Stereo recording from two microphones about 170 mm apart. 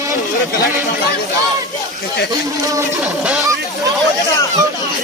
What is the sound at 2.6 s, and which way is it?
Speech, 20° right (ahead or behind).